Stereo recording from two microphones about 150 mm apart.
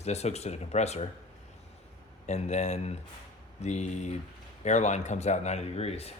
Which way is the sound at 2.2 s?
50° left (ahead or behind).